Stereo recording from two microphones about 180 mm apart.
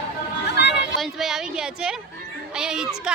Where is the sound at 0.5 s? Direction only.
70° left (ahead or behind).